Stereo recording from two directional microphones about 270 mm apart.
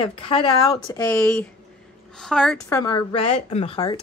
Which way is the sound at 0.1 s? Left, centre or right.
Centre.